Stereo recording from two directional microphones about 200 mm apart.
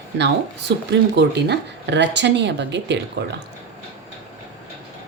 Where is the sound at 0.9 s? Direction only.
60° right (ahead or behind).